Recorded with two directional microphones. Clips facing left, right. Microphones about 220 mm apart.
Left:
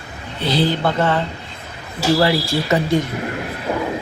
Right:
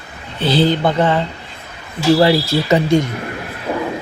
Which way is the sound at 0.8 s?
15° right (ahead or behind).